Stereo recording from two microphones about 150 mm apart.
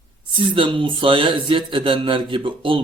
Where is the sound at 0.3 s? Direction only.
35° right (ahead or behind).